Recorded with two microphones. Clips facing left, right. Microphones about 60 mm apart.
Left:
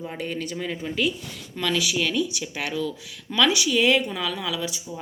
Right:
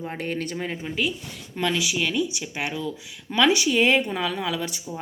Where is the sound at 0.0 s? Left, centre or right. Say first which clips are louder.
Right 1 dB; right.